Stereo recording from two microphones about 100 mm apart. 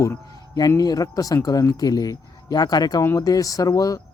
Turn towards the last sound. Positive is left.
turn(degrees=40)  # may be behind; listen again after turning